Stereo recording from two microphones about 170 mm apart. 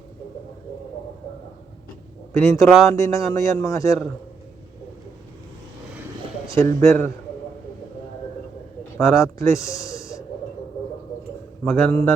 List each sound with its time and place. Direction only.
2.4 s a man's voice: 15° left (ahead or behind)
6.8 s a man's voice: 15° left (ahead or behind)
9.0 s a man's voice: 15° left (ahead or behind)
11.6 s a man's voice: 5° left (ahead or behind)